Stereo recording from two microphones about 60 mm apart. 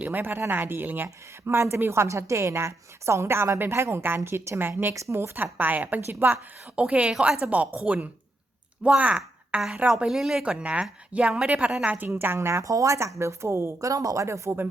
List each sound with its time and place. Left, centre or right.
0.0 s a woman's voice: right
6.7 s a woman's voice: centre
10.1 s speech: centre
10.4 s a woman's voice: centre
11.9 s a woman's voice: right
12.6 s speech: right
13.8 s speech: right